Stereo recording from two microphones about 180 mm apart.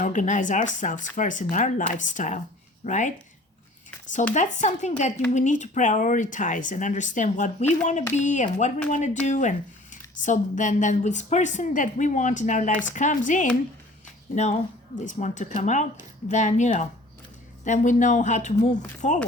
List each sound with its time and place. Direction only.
0.0 s speech: 45° left (ahead or behind)
4.4 s speech: 40° left (ahead or behind)